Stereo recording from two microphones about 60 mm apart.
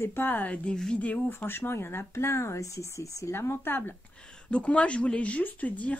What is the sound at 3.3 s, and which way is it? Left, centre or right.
Speech, left.